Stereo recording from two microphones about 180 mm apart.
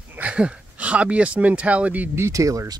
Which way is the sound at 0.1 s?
5° right (ahead or behind).